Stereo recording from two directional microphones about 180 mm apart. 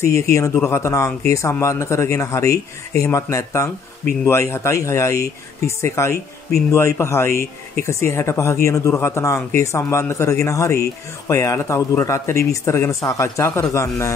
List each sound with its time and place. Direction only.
0.0 s speech: 15° left (ahead or behind)